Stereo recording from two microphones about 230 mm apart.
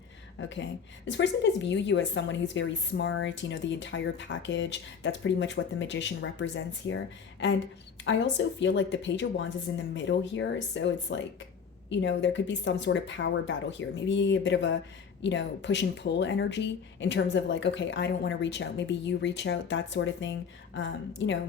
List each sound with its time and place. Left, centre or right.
0.3 s a woman's voice: left